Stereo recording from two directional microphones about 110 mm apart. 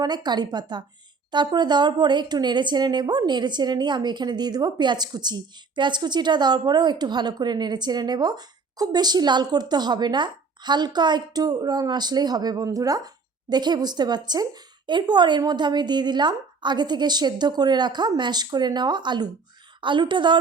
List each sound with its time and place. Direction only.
0.0 s a woman's voice: 40° right (ahead or behind)